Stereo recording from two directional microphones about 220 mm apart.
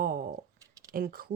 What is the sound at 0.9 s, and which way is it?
Speech, 40° right (ahead or behind).